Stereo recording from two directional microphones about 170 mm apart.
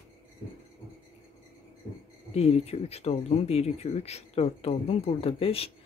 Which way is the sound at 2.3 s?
35° left (ahead or behind).